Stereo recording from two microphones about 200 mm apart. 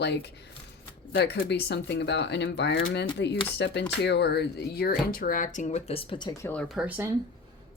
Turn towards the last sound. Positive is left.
turn(degrees=-10)  # may be behind; listen again after turning